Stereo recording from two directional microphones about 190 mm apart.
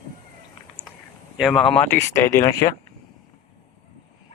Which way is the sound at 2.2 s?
15° left (ahead or behind).